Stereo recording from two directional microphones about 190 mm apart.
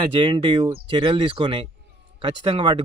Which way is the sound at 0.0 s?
25° right (ahead or behind).